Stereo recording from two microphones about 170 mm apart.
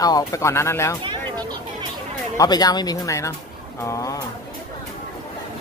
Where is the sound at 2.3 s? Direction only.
20° left (ahead or behind).